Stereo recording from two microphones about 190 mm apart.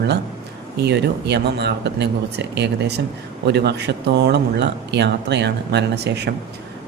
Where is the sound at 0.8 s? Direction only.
65° right (ahead or behind).